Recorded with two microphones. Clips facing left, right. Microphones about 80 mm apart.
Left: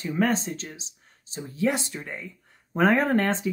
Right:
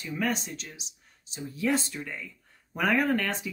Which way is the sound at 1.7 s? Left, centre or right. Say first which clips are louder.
Left 1 dB; left.